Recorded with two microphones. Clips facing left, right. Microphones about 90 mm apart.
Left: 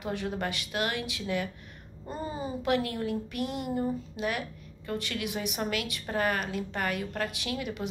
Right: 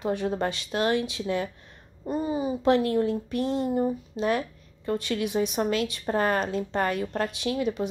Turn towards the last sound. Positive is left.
turn(degrees=-25)  # may be behind; listen again after turning